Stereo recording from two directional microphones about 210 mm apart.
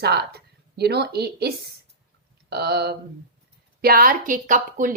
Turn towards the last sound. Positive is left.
turn(degrees=-40)  # may be behind; listen again after turning